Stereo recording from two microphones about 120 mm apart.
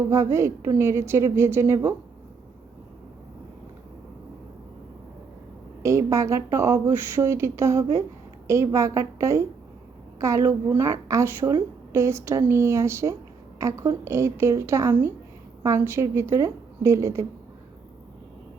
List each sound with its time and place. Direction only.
0.1 s speech: 25° right (ahead or behind)
5.8 s speech: 25° right (ahead or behind)